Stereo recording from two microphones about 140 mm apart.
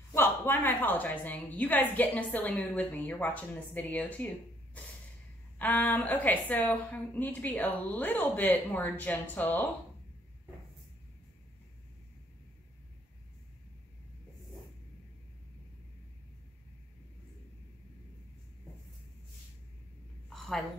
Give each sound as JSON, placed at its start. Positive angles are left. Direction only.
{"t": 0.1, "sound": "a woman's voice", "side_deg": 15}
{"t": 5.6, "sound": "a woman's voice", "side_deg": 10}
{"t": 20.2, "sound": "a sound", "side_deg": 0}